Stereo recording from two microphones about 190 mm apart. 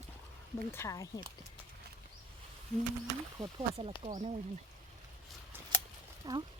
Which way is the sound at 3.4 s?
25° right (ahead or behind).